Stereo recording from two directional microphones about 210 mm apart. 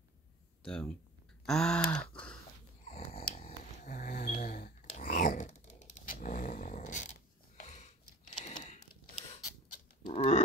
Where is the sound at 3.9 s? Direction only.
40° left (ahead or behind).